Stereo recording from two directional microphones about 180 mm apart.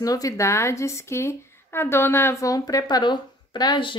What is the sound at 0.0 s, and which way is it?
A woman's voice, 20° left (ahead or behind).